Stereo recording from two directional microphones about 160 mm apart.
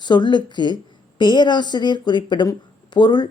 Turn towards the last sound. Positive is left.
turn(degrees=25)  # may be behind; listen again after turning